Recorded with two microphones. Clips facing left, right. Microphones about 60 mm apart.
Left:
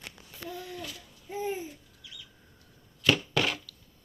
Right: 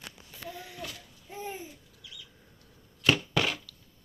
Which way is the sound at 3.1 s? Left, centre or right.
Centre.